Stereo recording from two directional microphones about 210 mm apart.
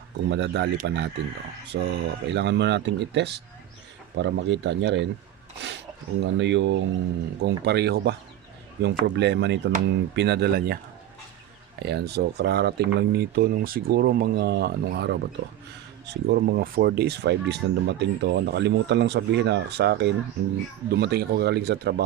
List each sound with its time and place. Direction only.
0.3 s speech: 55° right (ahead or behind)
6.2 s speech: 60° right (ahead or behind)
11.8 s speech: 50° right (ahead or behind)